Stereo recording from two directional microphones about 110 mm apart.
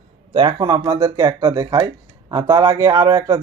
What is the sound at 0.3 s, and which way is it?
A man's voice, 40° right (ahead or behind).